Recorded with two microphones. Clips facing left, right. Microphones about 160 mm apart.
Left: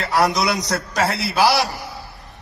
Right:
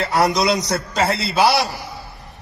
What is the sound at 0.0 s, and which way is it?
A man's voice, 20° right (ahead or behind).